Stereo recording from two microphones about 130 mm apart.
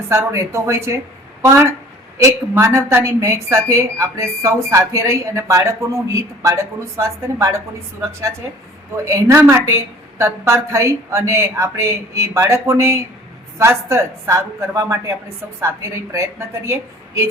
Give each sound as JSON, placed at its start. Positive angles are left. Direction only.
{"t": 0.1, "sound": "a woman's voice", "side_deg": -20}
{"t": 2.1, "sound": "a woman's voice", "side_deg": -25}
{"t": 9.0, "sound": "a woman's voice", "side_deg": -25}